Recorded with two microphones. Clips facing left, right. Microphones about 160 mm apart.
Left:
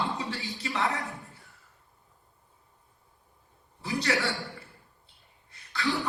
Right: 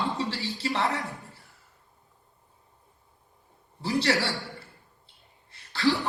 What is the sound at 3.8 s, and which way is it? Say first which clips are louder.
Speech: right 4 dB; 35° right (ahead or behind).